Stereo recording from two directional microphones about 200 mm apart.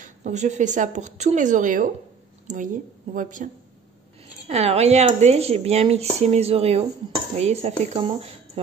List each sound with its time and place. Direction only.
0.0 s speech: 35° right (ahead or behind)
4.5 s speech: 30° right (ahead or behind)